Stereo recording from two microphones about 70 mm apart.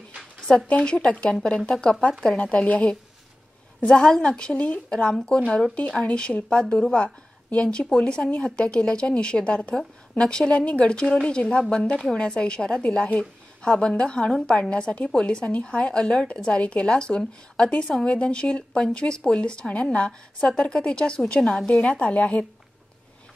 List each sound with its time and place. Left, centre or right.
0.7 s a woman's voice: centre
22.1 s speech: centre